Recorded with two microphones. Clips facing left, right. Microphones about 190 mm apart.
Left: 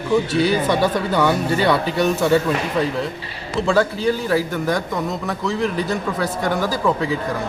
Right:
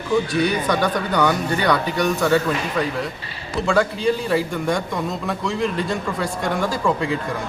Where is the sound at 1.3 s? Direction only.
25° left (ahead or behind).